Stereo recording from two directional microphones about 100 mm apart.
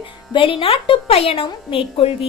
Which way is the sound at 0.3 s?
60° left (ahead or behind).